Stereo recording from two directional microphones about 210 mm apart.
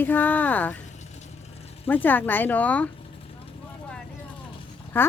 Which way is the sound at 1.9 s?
10° left (ahead or behind).